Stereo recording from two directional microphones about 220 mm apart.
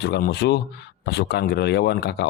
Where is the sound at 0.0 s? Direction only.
50° left (ahead or behind).